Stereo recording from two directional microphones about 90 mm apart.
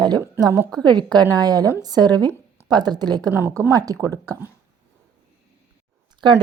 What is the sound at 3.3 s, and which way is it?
Speech, 30° right (ahead or behind).